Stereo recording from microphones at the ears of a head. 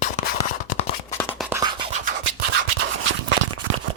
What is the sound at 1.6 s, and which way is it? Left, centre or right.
Scratch, right.